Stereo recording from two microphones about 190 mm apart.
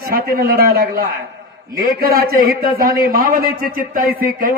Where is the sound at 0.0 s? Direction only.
50° right (ahead or behind).